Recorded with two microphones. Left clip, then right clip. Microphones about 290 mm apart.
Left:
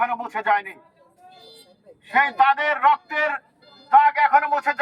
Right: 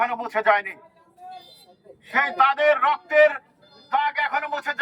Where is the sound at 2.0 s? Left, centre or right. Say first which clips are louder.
Left 2 dB; centre.